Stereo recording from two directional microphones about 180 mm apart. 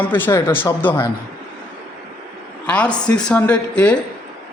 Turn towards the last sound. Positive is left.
turn(degrees=5)  # may be behind; listen again after turning